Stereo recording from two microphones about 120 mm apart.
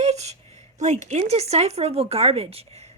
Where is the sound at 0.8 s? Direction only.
75° right (ahead or behind).